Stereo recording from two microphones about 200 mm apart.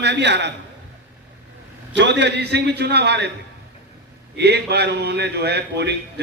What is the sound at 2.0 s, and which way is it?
A man's voice, 60° right (ahead or behind).